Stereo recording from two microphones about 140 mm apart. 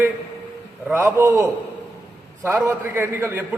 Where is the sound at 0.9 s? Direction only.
15° right (ahead or behind).